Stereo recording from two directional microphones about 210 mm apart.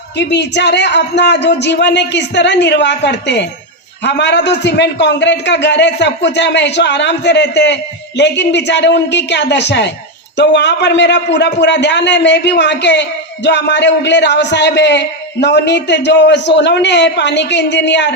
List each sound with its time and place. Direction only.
0.2 s a man's voice: 55° left (ahead or behind)